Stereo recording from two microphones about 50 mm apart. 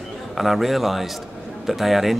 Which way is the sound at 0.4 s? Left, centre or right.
Centre.